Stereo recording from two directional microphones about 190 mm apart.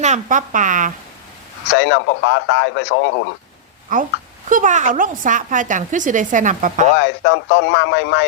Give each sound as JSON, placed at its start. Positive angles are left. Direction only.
{"t": 0.0, "sound": "a woman's voice", "side_deg": -40}
{"t": 1.7, "sound": "speech", "side_deg": 70}
{"t": 3.9, "sound": "a woman's voice", "side_deg": -45}
{"t": 7.0, "sound": "speech", "side_deg": 70}